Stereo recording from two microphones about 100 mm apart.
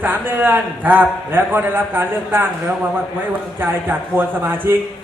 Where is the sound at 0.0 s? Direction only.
20° right (ahead or behind).